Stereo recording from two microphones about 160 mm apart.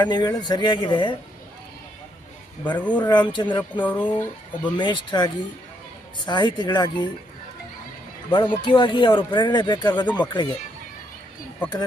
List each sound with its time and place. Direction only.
0.0 s speech: 25° left (ahead or behind)
2.7 s speech: 10° left (ahead or behind)
3.0 s speech: 30° left (ahead or behind)
3.6 s speech: 10° left (ahead or behind)
4.6 s speech: 30° left (ahead or behind)
8.3 s speech: 30° left (ahead or behind)